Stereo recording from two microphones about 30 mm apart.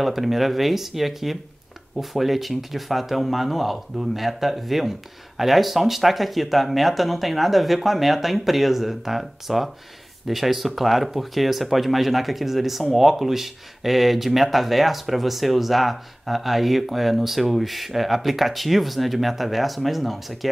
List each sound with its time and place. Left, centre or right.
0.0 s speech: centre